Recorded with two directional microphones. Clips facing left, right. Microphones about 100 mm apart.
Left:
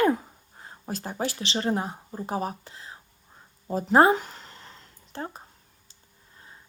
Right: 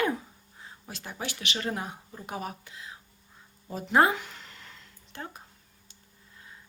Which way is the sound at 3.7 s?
35° left (ahead or behind).